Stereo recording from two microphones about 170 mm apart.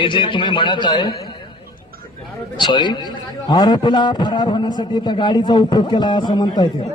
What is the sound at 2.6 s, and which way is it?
A man's voice, 25° left (ahead or behind).